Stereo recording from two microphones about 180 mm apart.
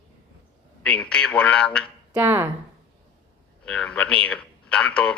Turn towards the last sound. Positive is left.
turn(degrees=5)  # may be behind; listen again after turning